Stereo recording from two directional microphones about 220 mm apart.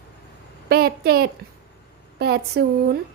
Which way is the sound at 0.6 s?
45° right (ahead or behind).